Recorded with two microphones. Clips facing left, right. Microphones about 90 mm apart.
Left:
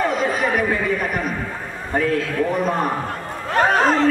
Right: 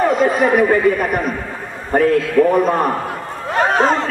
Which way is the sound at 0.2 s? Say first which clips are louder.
Right 6 dB; 50° right (ahead or behind).